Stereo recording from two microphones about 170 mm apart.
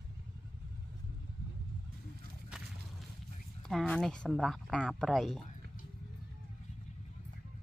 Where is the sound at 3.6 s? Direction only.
5° left (ahead or behind).